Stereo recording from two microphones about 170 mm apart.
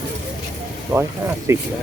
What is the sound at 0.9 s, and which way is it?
Speech, 10° right (ahead or behind).